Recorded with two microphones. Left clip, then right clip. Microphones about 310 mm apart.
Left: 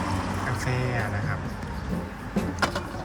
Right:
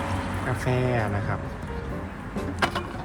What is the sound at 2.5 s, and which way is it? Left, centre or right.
Vehicle, centre.